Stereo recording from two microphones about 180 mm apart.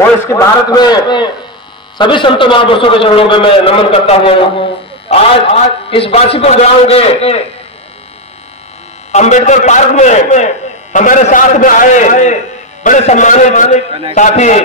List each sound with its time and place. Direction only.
0.2 s a man's voice: 15° left (ahead or behind); by 7.4 s 35° left (ahead or behind)
9.1 s a man's voice: 40° left (ahead or behind)